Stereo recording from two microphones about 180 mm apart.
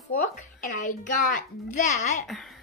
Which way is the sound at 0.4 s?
45° left (ahead or behind).